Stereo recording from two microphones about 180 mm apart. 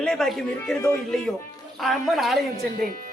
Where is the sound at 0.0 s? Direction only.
5° left (ahead or behind).